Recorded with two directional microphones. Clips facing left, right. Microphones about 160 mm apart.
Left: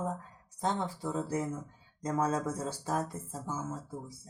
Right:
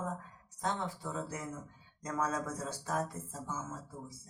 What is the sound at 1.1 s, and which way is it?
Speech, 35° left (ahead or behind).